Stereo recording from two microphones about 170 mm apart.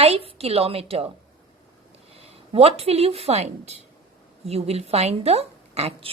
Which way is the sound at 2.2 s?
35° right (ahead or behind).